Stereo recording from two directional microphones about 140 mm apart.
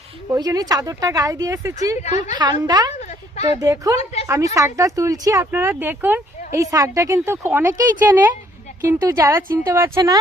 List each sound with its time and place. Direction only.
0.3 s speech: 25° right (ahead or behind)
2.0 s a woman's voice: 55° left (ahead or behind)
2.4 s speech: 30° right (ahead or behind)
2.9 s a sound: 50° left (ahead or behind)
3.4 s speech: 25° right (ahead or behind)